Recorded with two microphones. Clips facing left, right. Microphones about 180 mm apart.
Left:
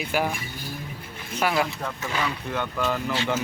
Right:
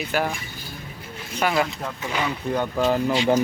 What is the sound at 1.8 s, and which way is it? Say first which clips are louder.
Speech: right 1 dB; 20° right (ahead or behind).